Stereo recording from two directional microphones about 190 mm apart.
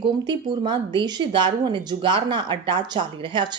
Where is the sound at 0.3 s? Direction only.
25° right (ahead or behind).